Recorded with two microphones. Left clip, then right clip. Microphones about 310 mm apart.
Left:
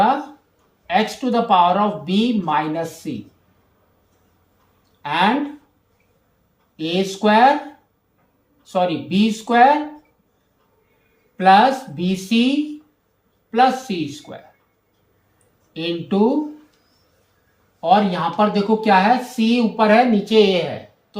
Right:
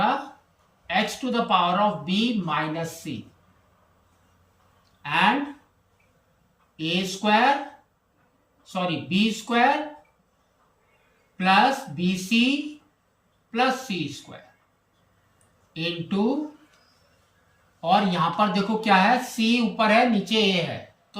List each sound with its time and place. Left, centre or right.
0.9 s a woman's voice: centre
5.0 s a woman's voice: centre
6.7 s a woman's voice: centre
8.6 s a woman's voice: centre
11.3 s a woman's voice: centre
15.7 s a woman's voice: centre
17.7 s a woman's voice: centre